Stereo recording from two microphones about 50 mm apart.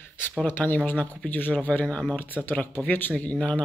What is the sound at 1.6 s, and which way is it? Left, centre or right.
Speech, left.